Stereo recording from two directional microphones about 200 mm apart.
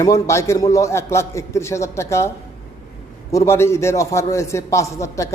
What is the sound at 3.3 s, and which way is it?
A man's voice, 15° left (ahead or behind).